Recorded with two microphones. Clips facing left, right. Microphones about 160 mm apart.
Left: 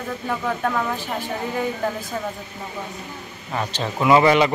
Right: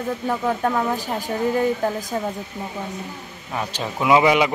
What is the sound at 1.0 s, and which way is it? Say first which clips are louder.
Speech: right 1 dB; 40° right (ahead or behind).